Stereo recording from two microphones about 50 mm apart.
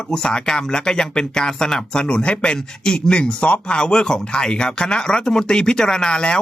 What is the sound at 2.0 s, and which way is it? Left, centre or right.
Speech, left.